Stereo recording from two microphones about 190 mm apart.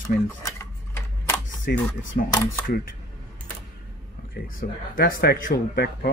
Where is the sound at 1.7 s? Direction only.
55° left (ahead or behind).